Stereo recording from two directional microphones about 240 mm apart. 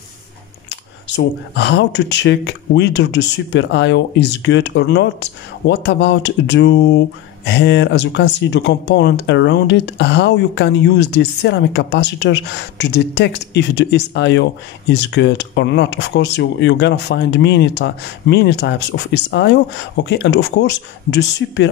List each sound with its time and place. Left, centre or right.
0.7 s speech: left